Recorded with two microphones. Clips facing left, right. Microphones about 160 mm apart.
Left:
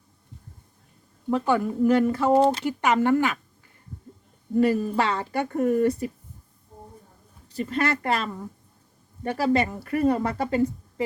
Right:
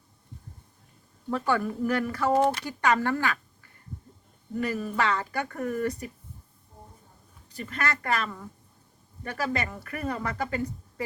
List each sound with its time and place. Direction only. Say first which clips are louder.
1.3 s speech: left 4 dB; 20° left (ahead or behind)
4.6 s speech: left 5 dB; 30° left (ahead or behind)
7.4 s speech: left 6 dB; 30° left (ahead or behind)